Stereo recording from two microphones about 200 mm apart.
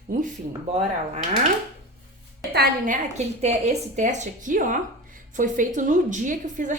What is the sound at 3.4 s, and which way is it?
A woman's voice, 35° right (ahead or behind).